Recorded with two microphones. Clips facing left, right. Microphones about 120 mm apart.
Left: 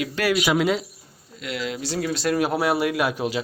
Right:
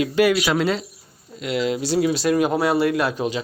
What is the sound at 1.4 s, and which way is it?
Speech, 25° right (ahead or behind).